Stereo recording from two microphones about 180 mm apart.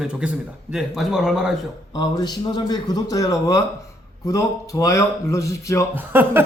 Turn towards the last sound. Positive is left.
turn(degrees=-10)  # may be behind; listen again after turning